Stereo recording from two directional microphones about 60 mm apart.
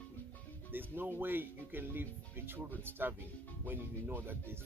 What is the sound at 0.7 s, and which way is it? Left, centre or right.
Speech, right.